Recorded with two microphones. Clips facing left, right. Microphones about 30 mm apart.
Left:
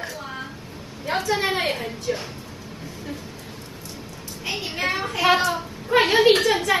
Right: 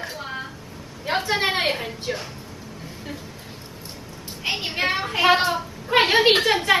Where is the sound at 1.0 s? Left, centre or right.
Right.